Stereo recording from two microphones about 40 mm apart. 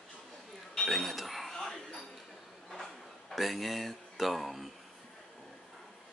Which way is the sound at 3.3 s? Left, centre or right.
Centre.